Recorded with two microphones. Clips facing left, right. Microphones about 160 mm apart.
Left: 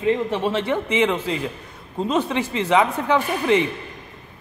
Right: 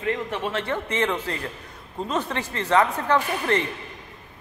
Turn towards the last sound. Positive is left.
turn(degrees=15)  # may be behind; listen again after turning